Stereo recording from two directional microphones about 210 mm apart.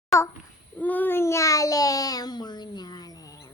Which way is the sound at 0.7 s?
10° left (ahead or behind).